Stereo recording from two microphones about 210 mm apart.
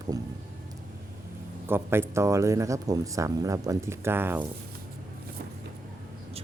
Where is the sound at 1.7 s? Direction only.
10° right (ahead or behind).